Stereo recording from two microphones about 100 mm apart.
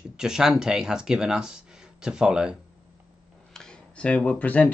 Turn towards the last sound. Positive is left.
turn(degrees=15)  # may be behind; listen again after turning